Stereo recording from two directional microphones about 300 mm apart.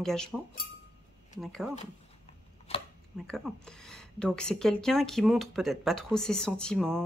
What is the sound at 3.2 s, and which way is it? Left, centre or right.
Speech, centre.